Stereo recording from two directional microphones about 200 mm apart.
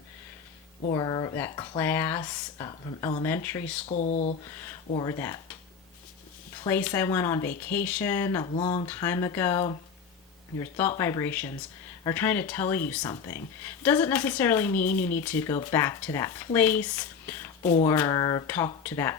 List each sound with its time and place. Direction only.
0.9 s speech: 20° left (ahead or behind)
3.2 s speech: 10° left (ahead or behind)
3.8 s speech: 35° left (ahead or behind)
5.0 s speech: 15° left (ahead or behind)
6.7 s speech: 10° left (ahead or behind)
8.5 s speech: 30° left (ahead or behind)
8.9 s speech: 15° left (ahead or behind)
17.6 s speech: 40° left (ahead or behind)
17.8 s speech: 15° left (ahead or behind)